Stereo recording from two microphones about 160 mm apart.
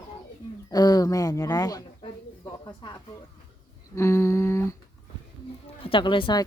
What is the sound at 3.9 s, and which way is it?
Humming, 15° left (ahead or behind).